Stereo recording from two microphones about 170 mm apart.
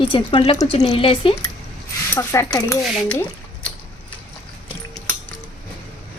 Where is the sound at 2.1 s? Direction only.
15° left (ahead or behind).